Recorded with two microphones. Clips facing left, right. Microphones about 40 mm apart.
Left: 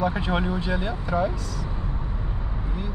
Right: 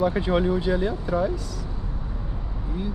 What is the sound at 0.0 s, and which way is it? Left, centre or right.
Speech, left.